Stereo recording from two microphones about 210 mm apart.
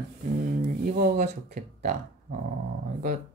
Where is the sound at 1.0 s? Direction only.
40° right (ahead or behind).